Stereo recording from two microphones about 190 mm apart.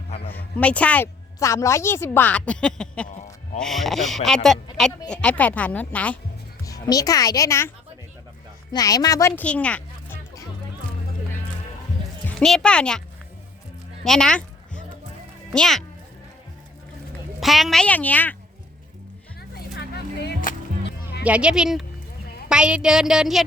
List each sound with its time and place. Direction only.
0.3 s a woman's voice: 10° left (ahead or behind)
6.7 s a woman's voice: 20° left (ahead or behind)
8.7 s speech: 20° left (ahead or behind)
12.4 s speech: 5° left (ahead or behind)
14.0 s a sound: 5° left (ahead or behind)
15.4 s speech: centre (ahead or behind)
17.4 s a woman's voice: centre (ahead or behind)
19.4 s a sound: 60° left (ahead or behind)
21.2 s speech: 5° right (ahead or behind)